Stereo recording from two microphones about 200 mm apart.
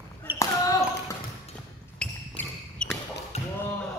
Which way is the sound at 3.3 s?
30° left (ahead or behind).